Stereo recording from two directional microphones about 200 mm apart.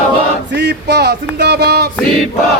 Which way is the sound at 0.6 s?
55° right (ahead or behind).